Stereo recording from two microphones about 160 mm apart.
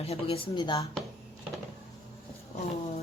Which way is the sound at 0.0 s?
35° left (ahead or behind).